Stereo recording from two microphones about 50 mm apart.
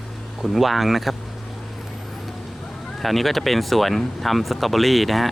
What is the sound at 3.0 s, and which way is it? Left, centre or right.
Speech, centre.